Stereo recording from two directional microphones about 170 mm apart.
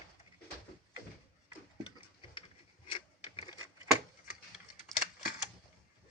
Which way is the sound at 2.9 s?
30° left (ahead or behind).